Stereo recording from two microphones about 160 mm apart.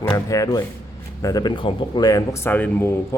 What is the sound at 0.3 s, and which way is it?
Speech, 20° left (ahead or behind).